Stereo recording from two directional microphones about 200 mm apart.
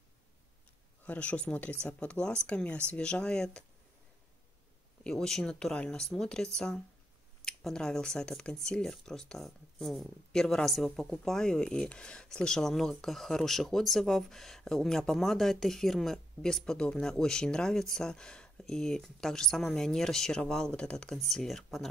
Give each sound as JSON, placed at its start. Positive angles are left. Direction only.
{"t": 1.0, "sound": "speech", "side_deg": 5}
{"t": 5.0, "sound": "speech", "side_deg": 0}